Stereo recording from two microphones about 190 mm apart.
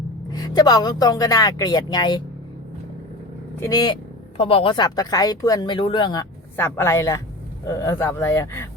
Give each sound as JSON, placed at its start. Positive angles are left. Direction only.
{"t": 0.3, "sound": "a woman's voice", "side_deg": 20}
{"t": 3.6, "sound": "a woman's voice", "side_deg": 20}